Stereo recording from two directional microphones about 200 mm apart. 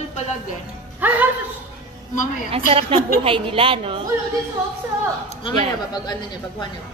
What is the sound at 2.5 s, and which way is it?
A woman's voice, 30° right (ahead or behind).